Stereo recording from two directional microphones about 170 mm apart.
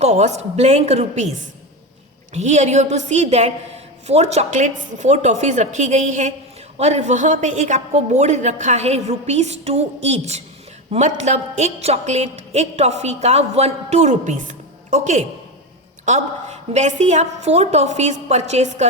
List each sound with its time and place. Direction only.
0.0 s a woman's voice: 40° right (ahead or behind)
2.3 s a woman's voice: 45° right (ahead or behind)